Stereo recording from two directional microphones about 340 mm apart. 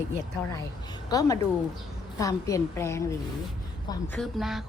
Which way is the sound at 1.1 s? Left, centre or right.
Centre.